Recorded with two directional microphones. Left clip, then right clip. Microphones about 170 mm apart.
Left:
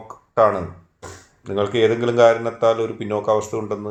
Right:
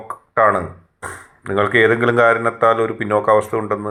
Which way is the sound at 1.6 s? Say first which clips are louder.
Right 4 dB; 40° right (ahead or behind).